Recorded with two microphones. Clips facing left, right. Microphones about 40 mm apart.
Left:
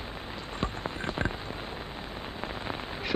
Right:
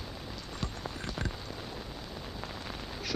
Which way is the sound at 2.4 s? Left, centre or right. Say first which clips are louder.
Left 8 dB; left.